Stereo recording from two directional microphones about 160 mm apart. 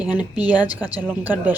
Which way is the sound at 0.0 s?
10° right (ahead or behind).